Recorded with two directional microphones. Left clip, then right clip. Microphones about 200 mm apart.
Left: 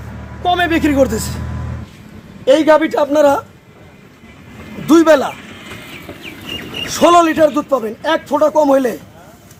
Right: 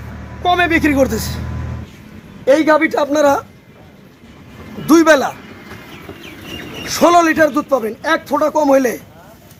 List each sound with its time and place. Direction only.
0.4 s a man's voice: 15° right (ahead or behind)
2.4 s a man's voice: 15° right (ahead or behind)
4.9 s a man's voice: 15° right (ahead or behind)
6.9 s a man's voice: 15° right (ahead or behind)